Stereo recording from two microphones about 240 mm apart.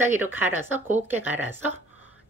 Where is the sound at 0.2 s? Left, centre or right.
Centre.